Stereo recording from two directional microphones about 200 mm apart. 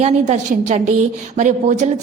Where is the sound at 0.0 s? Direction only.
35° right (ahead or behind).